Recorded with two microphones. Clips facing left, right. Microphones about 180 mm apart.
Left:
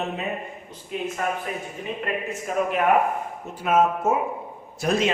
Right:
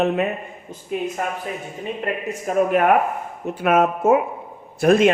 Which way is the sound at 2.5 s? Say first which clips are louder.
Right 6 dB; 45° right (ahead or behind).